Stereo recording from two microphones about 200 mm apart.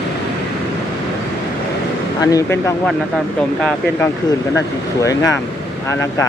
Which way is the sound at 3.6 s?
5° left (ahead or behind).